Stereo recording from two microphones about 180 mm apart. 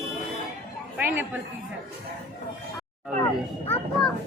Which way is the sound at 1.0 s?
10° right (ahead or behind).